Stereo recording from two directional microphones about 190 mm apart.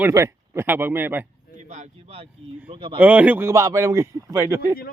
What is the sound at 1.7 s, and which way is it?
Speech, 35° right (ahead or behind).